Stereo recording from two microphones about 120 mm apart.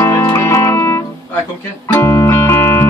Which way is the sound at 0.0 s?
25° left (ahead or behind).